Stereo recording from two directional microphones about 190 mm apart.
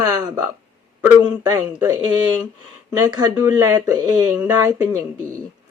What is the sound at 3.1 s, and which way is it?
Speech, 20° right (ahead or behind).